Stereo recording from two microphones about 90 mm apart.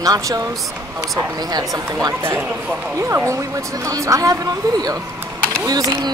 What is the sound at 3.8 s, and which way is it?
Speech, 35° right (ahead or behind).